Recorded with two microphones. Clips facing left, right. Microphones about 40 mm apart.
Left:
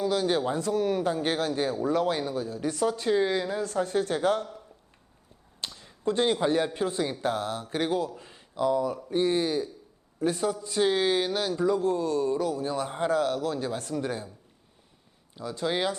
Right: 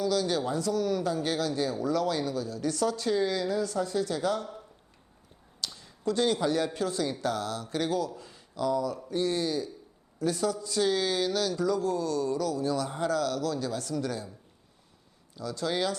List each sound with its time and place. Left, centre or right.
0.0 s speech: left
5.5 s finger snapping: left
6.7 s speech: left
15.4 s speech: left